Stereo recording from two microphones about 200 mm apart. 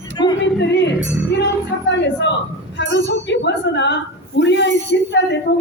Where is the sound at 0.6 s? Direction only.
60° left (ahead or behind).